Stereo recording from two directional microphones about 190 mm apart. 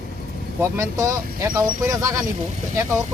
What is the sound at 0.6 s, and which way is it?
Speech, 15° right (ahead or behind).